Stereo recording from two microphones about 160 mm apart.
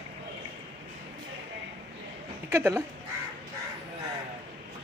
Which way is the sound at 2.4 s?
15° right (ahead or behind).